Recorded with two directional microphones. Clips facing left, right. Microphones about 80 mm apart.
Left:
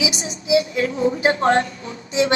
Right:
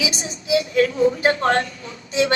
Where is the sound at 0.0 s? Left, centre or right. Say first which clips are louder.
Left 2 dB; left.